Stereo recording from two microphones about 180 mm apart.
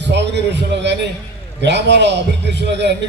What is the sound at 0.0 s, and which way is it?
A man's voice, 75° right (ahead or behind).